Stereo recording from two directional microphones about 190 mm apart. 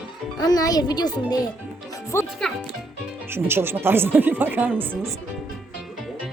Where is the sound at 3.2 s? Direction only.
10° right (ahead or behind).